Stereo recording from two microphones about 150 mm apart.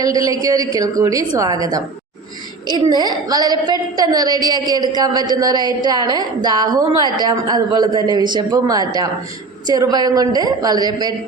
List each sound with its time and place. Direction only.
0.0 s a woman's voice: 25° right (ahead or behind)